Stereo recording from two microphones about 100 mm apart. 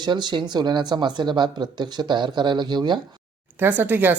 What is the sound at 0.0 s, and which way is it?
Speech, 50° right (ahead or behind).